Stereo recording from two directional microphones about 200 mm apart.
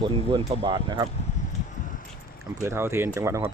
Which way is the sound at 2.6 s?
10° right (ahead or behind).